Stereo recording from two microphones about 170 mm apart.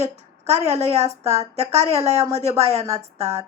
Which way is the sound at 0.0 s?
40° right (ahead or behind).